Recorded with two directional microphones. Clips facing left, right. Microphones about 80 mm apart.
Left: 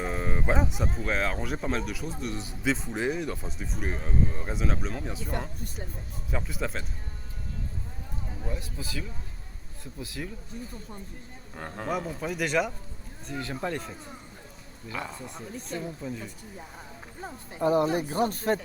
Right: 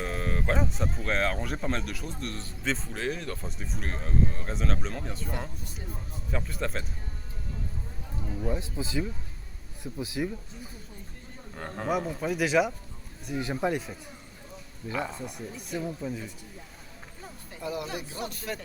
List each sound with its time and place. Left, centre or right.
0.0 s a man's voice: centre
6.3 s a man's voice: centre
8.4 s speech: right
11.5 s a man's voice: centre
13.2 s speech: centre
14.9 s speech: centre
15.4 s speech: left
16.0 s a man's voice: centre
17.2 s speech: left